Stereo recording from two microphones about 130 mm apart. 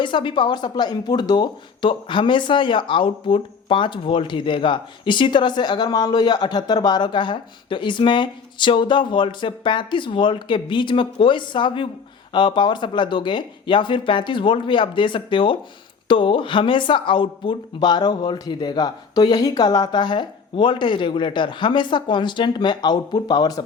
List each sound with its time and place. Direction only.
0.0 s speech: 40° left (ahead or behind)